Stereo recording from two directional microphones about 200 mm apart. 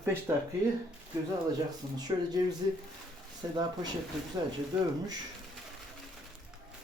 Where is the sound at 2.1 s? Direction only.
25° right (ahead or behind).